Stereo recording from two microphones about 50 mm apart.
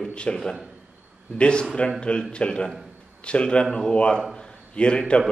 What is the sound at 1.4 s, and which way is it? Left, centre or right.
A man's voice, centre.